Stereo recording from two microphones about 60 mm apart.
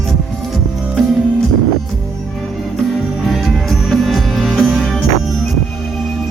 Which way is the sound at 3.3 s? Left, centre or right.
Centre.